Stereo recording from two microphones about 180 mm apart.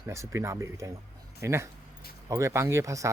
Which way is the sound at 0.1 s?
15° right (ahead or behind).